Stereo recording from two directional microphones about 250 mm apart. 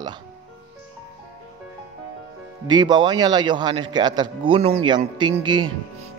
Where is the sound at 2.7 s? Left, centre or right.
Centre.